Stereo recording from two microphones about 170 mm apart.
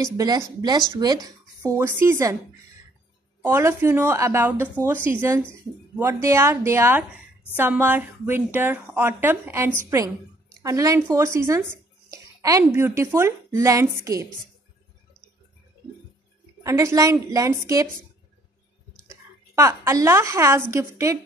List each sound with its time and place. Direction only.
0.0 s a woman's voice: 20° right (ahead or behind)
3.4 s a woman's voice: 15° right (ahead or behind)
16.6 s a woman's voice: 20° right (ahead or behind)
19.5 s a woman's voice: 15° right (ahead or behind)